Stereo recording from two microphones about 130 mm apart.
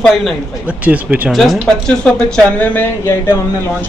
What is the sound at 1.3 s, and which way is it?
Speech, centre (ahead or behind).